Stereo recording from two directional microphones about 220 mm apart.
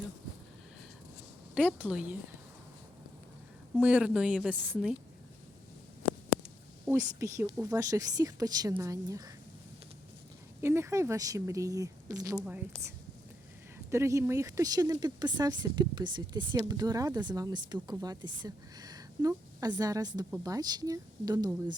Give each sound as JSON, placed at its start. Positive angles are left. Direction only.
{"t": 1.5, "sound": "a woman's voice", "side_deg": -5}
{"t": 3.8, "sound": "a woman's voice", "side_deg": -5}
{"t": 6.8, "sound": "a woman's voice", "side_deg": -15}
{"t": 10.6, "sound": "a woman's voice", "side_deg": -10}
{"t": 13.9, "sound": "a woman's voice", "side_deg": -15}